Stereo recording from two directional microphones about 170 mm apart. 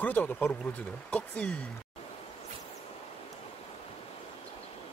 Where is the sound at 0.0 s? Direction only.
10° left (ahead or behind).